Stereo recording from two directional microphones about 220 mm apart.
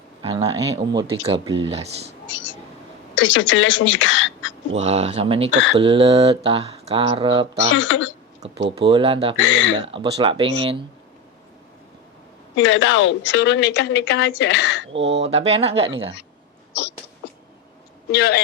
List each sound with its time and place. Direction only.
0.2 s speech: 25° right (ahead or behind)
3.2 s speech: 60° left (ahead or behind)
4.8 s speech: 30° right (ahead or behind)
7.7 s speech: 60° left (ahead or behind)
8.9 s speech: 25° right (ahead or behind)
9.4 s speech: 60° left (ahead or behind)
9.8 s speech: 25° right (ahead or behind)
12.5 s a woman's voice: 60° left (ahead or behind)
14.9 s speech: 55° right (ahead or behind)
15.2 s speech: 30° right (ahead or behind)
18.1 s a woman's voice: 45° left (ahead or behind)